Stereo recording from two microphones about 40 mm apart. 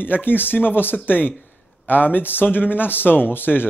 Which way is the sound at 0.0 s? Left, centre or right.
Left.